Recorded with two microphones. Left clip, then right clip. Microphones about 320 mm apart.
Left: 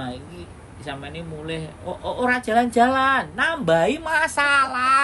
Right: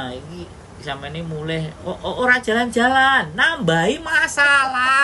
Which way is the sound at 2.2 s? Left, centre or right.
Centre.